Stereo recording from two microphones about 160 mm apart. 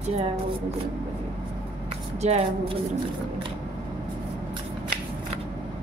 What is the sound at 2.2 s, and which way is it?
Speech, 45° right (ahead or behind).